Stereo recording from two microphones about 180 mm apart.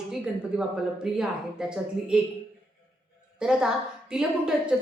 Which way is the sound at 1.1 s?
5° right (ahead or behind).